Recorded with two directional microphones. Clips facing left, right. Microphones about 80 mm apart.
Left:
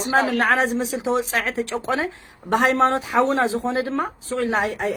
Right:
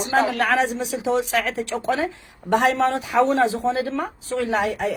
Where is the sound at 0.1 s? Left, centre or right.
Left.